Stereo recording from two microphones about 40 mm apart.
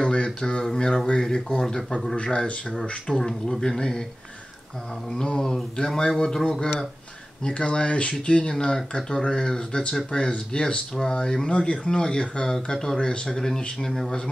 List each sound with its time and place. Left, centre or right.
0.0 s a sound: left
1.2 s speech: centre
2.1 s speech: left
3.1 s speech: centre
5.1 s speech: centre